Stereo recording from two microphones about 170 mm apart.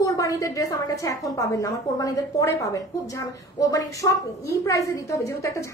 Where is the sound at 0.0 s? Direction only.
20° left (ahead or behind).